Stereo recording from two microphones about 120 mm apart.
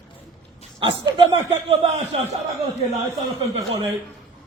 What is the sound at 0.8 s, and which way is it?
Speech, 45° right (ahead or behind).